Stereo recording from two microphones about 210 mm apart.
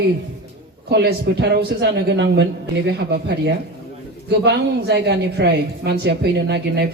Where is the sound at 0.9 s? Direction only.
55° right (ahead or behind).